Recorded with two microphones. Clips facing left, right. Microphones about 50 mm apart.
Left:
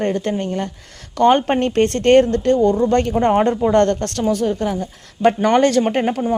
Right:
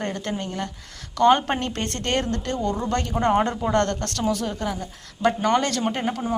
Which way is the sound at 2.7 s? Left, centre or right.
Centre.